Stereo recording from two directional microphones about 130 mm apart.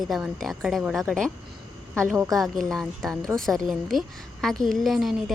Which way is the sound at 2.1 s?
20° right (ahead or behind).